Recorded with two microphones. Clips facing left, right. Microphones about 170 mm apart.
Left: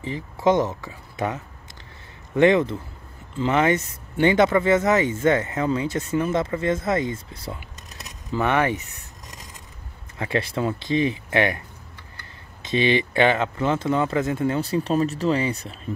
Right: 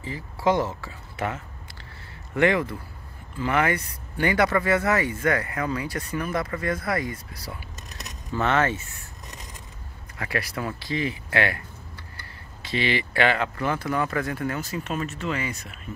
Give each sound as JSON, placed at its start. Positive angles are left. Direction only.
{"t": 0.0, "sound": "speech", "side_deg": 20}
{"t": 8.0, "sound": "speech", "side_deg": 15}
{"t": 10.1, "sound": "speech", "side_deg": 25}
{"t": 12.6, "sound": "speech", "side_deg": 20}